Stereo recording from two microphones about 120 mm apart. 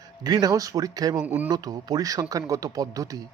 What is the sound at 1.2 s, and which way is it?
Speech, 10° right (ahead or behind).